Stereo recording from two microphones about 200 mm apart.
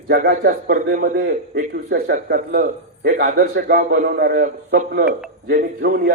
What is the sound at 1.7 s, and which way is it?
A man's voice, 60° right (ahead or behind).